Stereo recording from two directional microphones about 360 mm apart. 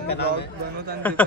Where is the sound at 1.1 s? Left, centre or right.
Centre.